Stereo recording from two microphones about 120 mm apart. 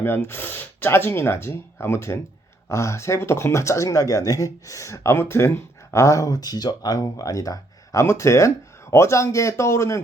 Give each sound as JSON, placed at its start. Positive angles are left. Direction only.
{"t": 0.0, "sound": "speech", "side_deg": 20}